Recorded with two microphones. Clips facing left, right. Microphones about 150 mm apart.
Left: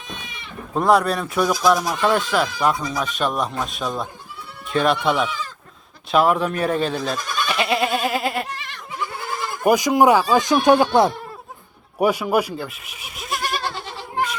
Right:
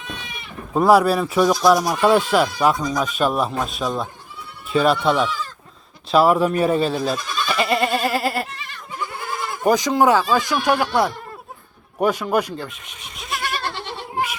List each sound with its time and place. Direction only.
0.7 s speech: 5° right (ahead or behind)
2.7 s speech: 5° left (ahead or behind)
3.2 s speech: 5° right (ahead or behind)
9.6 s speech: 10° left (ahead or behind)
11.9 s goat: 10° left (ahead or behind)